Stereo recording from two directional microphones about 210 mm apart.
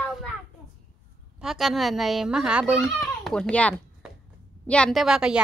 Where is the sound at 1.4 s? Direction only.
Centre (ahead or behind).